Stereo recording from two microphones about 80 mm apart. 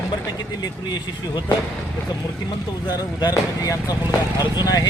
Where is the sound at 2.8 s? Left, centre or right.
Left.